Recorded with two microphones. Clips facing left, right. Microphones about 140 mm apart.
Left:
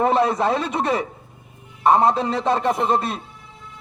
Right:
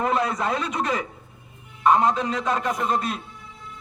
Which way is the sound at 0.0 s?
30° left (ahead or behind).